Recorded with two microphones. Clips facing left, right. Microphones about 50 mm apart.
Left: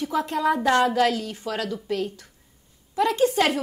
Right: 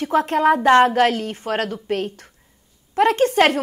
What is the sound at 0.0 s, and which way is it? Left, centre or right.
A woman's voice, right.